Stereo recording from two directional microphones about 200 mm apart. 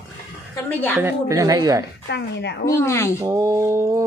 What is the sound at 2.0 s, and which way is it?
Speech, 60° left (ahead or behind).